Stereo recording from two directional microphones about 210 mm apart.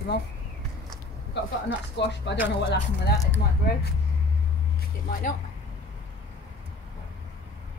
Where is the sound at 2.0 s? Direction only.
55° left (ahead or behind).